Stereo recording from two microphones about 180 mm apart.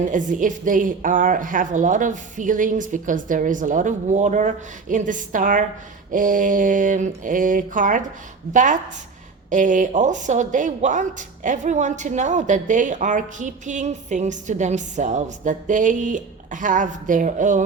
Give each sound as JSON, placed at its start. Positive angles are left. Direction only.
{"t": 0.1, "sound": "speech", "side_deg": -45}